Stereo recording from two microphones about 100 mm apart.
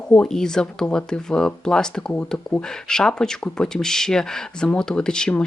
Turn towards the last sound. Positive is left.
turn(degrees=10)  # may be behind; listen again after turning